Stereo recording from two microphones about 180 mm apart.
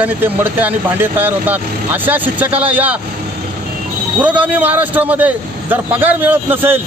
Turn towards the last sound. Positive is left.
turn(degrees=-10)  # may be behind; listen again after turning